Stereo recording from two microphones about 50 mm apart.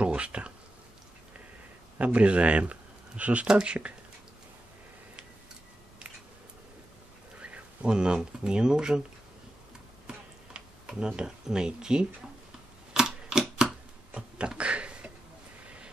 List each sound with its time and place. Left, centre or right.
0.0 s a sound: right
2.0 s speech: right
7.3 s speech: right
10.0 s tick-tock: centre
12.9 s typewriter: centre
14.1 s a sound: centre